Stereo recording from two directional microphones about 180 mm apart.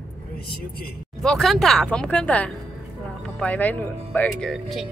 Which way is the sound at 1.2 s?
Centre (ahead or behind).